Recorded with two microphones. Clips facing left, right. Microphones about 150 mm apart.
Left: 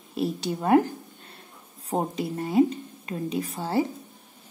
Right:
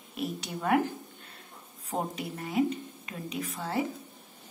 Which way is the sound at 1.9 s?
30° left (ahead or behind).